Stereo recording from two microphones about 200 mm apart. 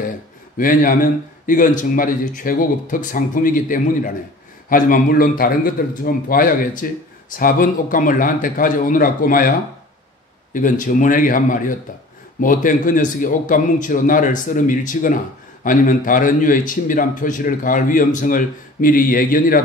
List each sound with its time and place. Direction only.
0.6 s a man's voice: 45° left (ahead or behind)
10.5 s a man's voice: 40° left (ahead or behind)